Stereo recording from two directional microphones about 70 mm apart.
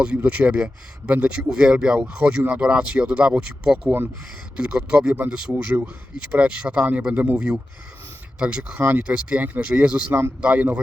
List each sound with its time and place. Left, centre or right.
0.3 s speech: centre
10.1 s a man's voice: right
10.4 s speech: centre